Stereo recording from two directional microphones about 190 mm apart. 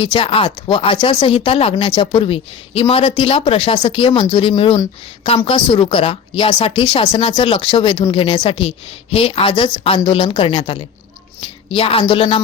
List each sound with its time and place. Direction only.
0.0 s a woman's voice: 30° left (ahead or behind)